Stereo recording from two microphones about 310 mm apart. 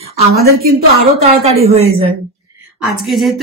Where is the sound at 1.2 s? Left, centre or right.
Centre.